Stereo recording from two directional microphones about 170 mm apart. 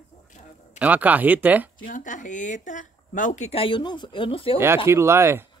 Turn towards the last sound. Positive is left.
turn(degrees=-15)  # may be behind; listen again after turning